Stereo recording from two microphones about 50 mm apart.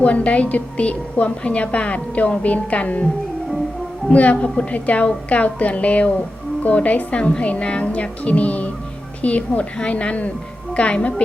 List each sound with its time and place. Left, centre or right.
0.0 s a woman's voice: left
4.1 s a woman's voice: left